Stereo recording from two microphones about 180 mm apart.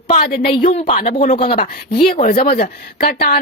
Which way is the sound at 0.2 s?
55° left (ahead or behind).